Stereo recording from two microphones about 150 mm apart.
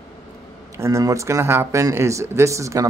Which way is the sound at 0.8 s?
20° right (ahead or behind).